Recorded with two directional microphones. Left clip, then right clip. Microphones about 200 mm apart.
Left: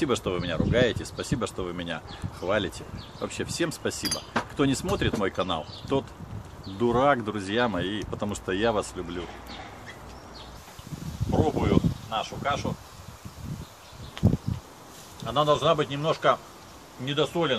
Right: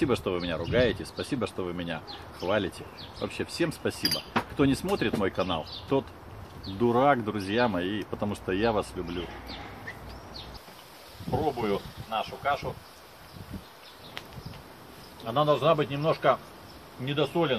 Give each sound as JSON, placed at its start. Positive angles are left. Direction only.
{"t": 0.0, "sound": "speech", "side_deg": 0}
{"t": 11.4, "sound": "speech", "side_deg": 0}
{"t": 14.2, "sound": "a sound", "side_deg": -45}
{"t": 15.2, "sound": "speech", "side_deg": 0}